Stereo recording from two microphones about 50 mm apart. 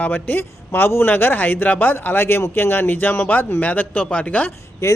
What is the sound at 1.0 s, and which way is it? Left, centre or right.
A man's voice, left.